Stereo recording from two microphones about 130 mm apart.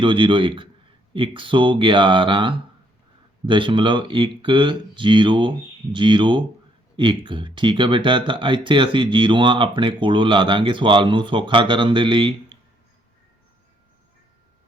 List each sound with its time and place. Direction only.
0.0 s speech: 40° right (ahead or behind)